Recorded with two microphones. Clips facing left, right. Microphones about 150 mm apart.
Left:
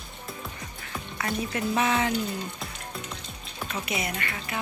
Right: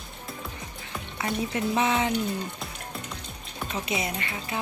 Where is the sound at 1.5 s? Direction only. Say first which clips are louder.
Even; 20° right (ahead or behind).